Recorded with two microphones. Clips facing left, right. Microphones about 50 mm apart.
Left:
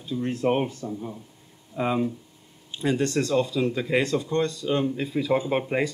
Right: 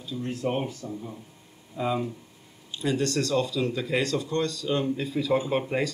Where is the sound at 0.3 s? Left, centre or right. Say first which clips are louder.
Left 5 dB; left.